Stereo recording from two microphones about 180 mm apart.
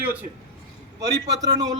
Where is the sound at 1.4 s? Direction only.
25° right (ahead or behind).